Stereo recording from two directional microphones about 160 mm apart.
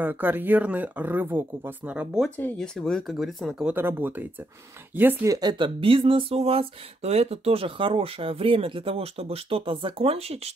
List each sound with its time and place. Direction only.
0.0 s speech: 10° right (ahead or behind)
2.0 s speech: centre (ahead or behind)
3.7 s speech: 15° right (ahead or behind); by 10.2 s 35° right (ahead or behind)